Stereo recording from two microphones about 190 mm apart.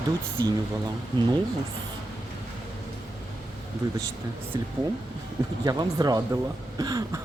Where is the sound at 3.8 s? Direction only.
15° right (ahead or behind).